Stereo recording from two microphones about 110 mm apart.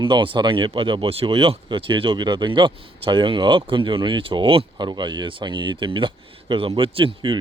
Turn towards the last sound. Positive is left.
turn(degrees=-50)  # may be behind; listen again after turning